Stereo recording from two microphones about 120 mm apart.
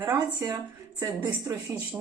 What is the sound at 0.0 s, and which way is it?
Speech, 15° right (ahead or behind).